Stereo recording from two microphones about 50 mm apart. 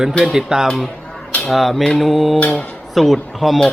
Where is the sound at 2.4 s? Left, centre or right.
Left.